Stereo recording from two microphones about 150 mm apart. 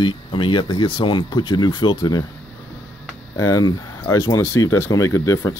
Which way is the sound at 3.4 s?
25° left (ahead or behind).